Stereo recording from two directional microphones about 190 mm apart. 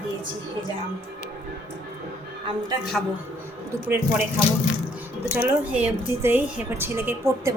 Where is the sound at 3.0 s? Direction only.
Centre (ahead or behind).